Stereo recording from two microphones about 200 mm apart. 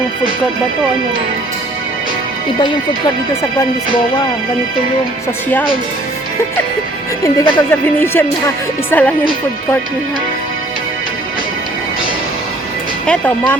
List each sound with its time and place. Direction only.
7.3 s speech: 25° left (ahead or behind)
7.7 s speech: 10° left (ahead or behind)
13.1 s speech: 10° left (ahead or behind)